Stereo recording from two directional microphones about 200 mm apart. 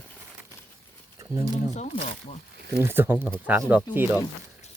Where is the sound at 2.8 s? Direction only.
10° right (ahead or behind).